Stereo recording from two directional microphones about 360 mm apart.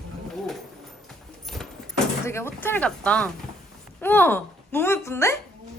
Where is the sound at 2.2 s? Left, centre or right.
Centre.